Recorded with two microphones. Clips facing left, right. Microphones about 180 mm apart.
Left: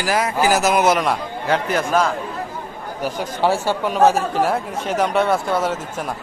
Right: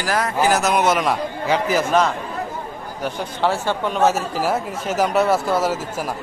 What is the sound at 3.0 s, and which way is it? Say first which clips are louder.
Speech: left 2 dB; 10° left (ahead or behind).